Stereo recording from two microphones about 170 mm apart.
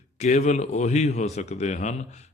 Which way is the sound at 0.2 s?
40° left (ahead or behind).